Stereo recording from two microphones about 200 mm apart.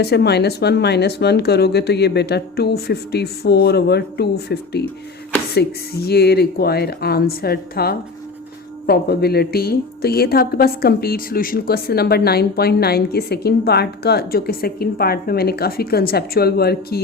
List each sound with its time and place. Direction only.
0.0 s a woman's voice: 55° left (ahead or behind)